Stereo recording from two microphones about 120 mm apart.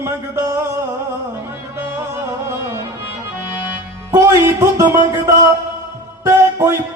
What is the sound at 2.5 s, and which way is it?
Music, 20° right (ahead or behind).